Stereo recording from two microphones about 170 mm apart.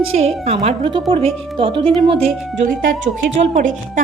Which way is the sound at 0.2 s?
40° right (ahead or behind).